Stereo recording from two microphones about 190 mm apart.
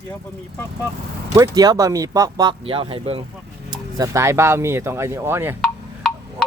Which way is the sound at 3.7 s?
15° right (ahead or behind).